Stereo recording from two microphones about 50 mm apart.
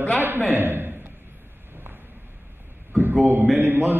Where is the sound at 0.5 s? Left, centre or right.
Right.